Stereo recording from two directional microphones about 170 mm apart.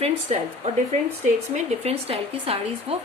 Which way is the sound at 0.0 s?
40° right (ahead or behind).